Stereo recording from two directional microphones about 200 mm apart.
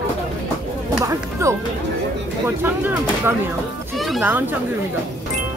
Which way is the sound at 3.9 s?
Centre (ahead or behind).